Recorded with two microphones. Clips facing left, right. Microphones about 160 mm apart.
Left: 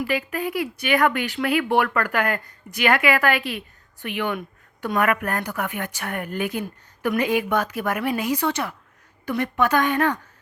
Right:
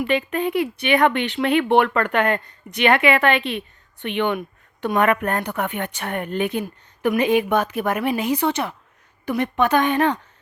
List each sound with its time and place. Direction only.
0.0 s a woman's voice: 25° right (ahead or behind)